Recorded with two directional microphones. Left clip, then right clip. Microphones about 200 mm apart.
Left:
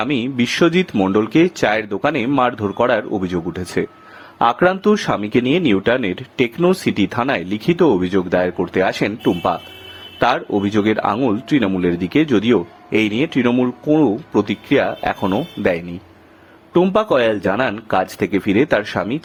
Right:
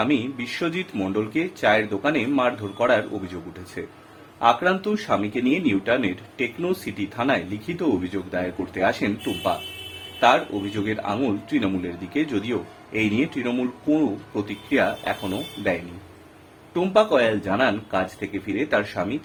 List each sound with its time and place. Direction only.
0.0 s speech: 50° left (ahead or behind)
16.7 s speech: 45° left (ahead or behind)